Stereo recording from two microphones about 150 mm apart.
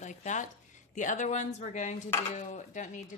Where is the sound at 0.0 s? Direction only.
55° left (ahead or behind).